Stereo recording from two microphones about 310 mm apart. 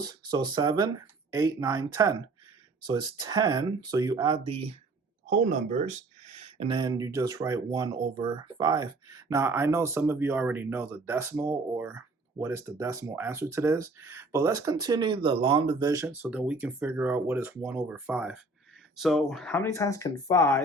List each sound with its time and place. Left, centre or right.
0.0 s speech: centre